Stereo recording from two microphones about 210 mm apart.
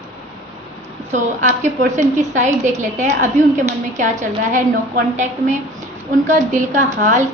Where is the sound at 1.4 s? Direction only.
35° right (ahead or behind).